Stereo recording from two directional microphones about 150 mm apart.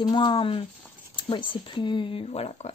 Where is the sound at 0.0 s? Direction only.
30° left (ahead or behind).